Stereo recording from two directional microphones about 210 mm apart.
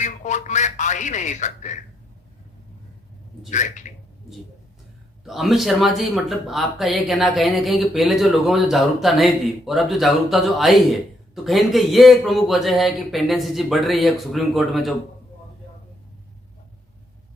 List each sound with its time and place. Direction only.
0.0 s speech: 35° left (ahead or behind)
3.5 s speech: 35° left (ahead or behind)
5.2 s speech: centre (ahead or behind)